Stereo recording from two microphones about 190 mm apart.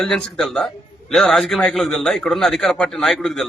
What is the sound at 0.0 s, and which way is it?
A man's voice, 5° left (ahead or behind).